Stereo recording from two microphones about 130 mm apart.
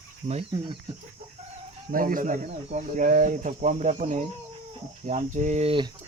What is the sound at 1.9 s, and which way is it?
Speech, 90° right.